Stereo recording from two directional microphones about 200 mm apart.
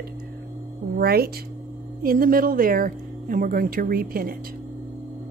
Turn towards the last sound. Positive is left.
turn(degrees=-45)  # may be behind; listen again after turning